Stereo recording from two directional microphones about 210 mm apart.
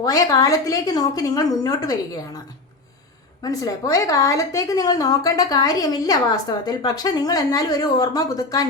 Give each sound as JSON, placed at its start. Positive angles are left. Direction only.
{"t": 0.0, "sound": "a woman's voice", "side_deg": 15}
{"t": 3.4, "sound": "a woman's voice", "side_deg": 15}